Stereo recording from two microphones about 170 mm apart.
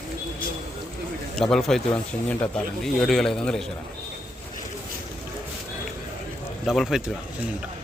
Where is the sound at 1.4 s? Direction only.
Centre (ahead or behind).